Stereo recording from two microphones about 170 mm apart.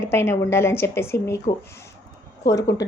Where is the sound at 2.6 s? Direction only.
20° left (ahead or behind).